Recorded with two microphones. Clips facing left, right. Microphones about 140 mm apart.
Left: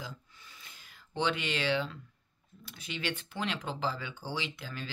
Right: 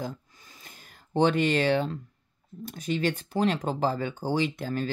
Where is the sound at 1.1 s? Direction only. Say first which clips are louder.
Right 10 dB; 45° right (ahead or behind).